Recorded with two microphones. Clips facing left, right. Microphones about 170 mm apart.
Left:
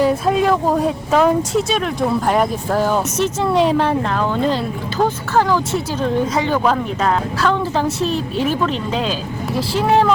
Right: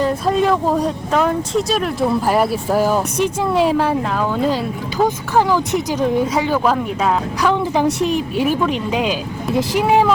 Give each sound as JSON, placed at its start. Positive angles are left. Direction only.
{"t": 0.0, "sound": "speech", "side_deg": 5}